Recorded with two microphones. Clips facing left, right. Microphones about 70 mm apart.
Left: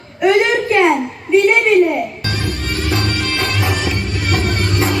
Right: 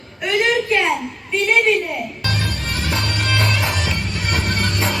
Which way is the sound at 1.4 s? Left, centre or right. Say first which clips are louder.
Left 6 dB; left.